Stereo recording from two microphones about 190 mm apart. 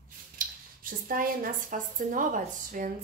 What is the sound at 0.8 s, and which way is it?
A woman's voice, 45° right (ahead or behind).